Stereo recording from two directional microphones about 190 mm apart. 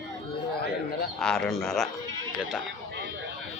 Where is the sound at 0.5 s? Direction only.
55° left (ahead or behind).